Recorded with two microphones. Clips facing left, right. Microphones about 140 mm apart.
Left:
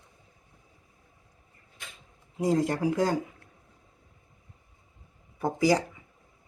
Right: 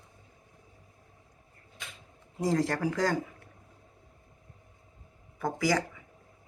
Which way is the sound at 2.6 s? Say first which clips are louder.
Left 3 dB; 15° left (ahead or behind).